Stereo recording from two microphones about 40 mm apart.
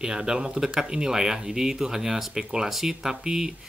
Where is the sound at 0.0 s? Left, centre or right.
Centre.